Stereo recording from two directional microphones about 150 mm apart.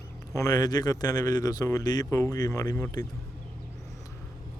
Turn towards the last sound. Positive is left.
turn(degrees=20)  # may be behind; listen again after turning